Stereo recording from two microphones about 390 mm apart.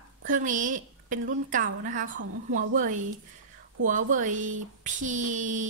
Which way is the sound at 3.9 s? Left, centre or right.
Centre.